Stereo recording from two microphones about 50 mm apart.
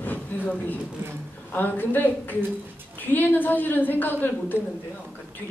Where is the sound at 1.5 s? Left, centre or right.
Left.